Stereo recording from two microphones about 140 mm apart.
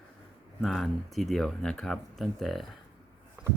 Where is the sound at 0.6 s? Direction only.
Centre (ahead or behind).